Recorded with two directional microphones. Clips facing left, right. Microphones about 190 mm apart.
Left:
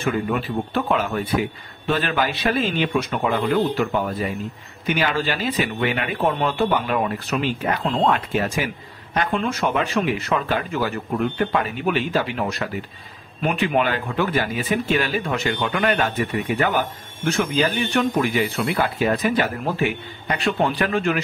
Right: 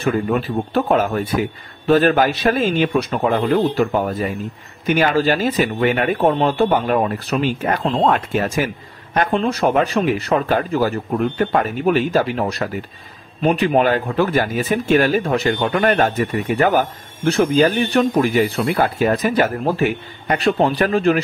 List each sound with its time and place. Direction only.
0.0 s speech: 40° right (ahead or behind)